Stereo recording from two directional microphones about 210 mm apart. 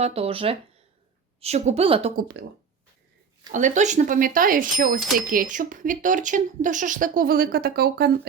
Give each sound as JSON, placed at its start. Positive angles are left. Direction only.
{"t": 0.0, "sound": "a woman's voice", "side_deg": -30}
{"t": 2.1, "sound": "speech", "side_deg": -50}
{"t": 3.5, "sound": "speech", "side_deg": -35}
{"t": 4.9, "sound": "speech", "side_deg": 0}
{"t": 5.3, "sound": "speech", "side_deg": -40}